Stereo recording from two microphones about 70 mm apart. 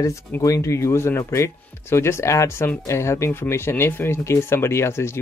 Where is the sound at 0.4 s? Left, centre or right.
Left.